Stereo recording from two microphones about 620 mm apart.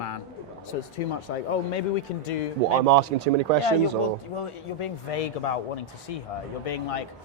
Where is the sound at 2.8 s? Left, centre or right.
Right.